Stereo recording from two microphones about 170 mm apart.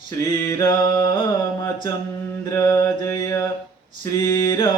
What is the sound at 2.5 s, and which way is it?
Mantra, 25° left (ahead or behind).